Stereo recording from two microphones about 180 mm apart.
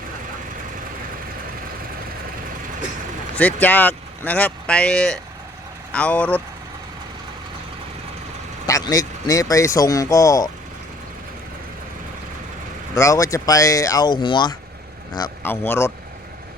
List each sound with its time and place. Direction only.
3.3 s speech: 10° left (ahead or behind)
8.6 s speech: 20° left (ahead or behind)
12.9 s speech: 15° left (ahead or behind)
15.4 s speech: 10° left (ahead or behind)